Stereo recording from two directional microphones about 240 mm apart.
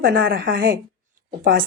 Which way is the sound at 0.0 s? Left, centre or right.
Right.